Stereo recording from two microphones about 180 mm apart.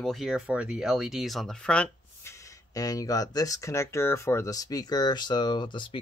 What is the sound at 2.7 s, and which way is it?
Speech, 20° left (ahead or behind).